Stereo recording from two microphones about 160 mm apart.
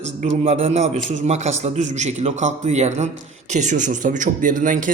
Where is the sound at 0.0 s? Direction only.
45° right (ahead or behind).